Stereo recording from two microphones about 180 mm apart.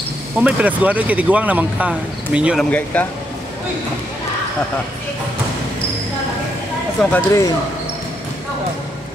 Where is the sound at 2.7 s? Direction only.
10° left (ahead or behind).